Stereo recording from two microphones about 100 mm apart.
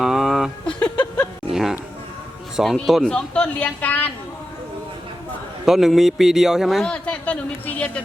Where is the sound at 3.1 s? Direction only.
10° left (ahead or behind).